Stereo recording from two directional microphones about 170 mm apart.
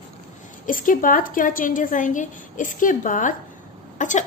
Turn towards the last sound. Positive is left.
turn(degrees=45)  # may be behind; listen again after turning